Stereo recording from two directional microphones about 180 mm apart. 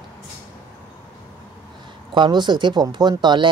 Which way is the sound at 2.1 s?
25° right (ahead or behind).